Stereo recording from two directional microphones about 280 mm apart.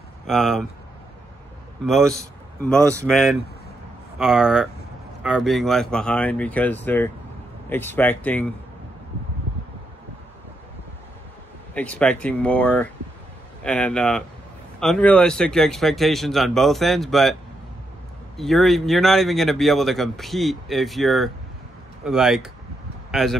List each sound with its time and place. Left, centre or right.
0.3 s speech: centre
1.9 s a man's voice: centre
11.7 s speech: centre
18.4 s speech: centre